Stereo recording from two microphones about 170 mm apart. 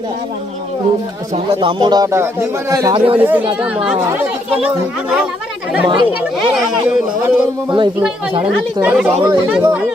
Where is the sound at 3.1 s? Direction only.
10° right (ahead or behind).